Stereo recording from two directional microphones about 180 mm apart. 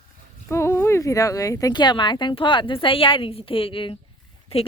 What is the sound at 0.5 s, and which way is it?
Speech, 15° left (ahead or behind).